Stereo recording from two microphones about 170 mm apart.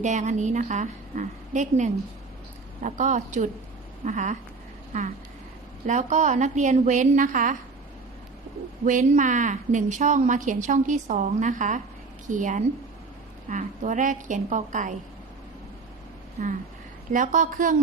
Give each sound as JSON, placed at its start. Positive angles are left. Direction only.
{"t": 0.0, "sound": "a woman's voice", "side_deg": -45}
{"t": 5.8, "sound": "a woman's voice", "side_deg": -45}
{"t": 8.8, "sound": "a woman's voice", "side_deg": -45}
{"t": 16.4, "sound": "a woman's voice", "side_deg": -50}